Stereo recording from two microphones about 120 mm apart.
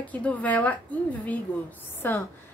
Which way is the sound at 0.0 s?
10° left (ahead or behind).